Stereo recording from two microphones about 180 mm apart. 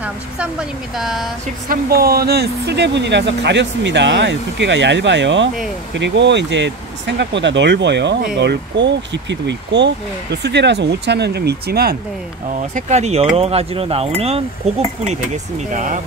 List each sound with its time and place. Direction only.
0.0 s speech: 5° right (ahead or behind)
1.7 s speech: 60° right (ahead or behind)
12.7 s speech: 40° right (ahead or behind)